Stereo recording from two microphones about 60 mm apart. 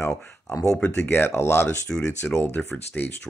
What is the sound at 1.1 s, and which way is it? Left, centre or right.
Speech, left.